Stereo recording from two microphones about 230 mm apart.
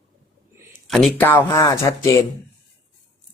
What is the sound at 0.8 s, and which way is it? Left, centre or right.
Speech, centre.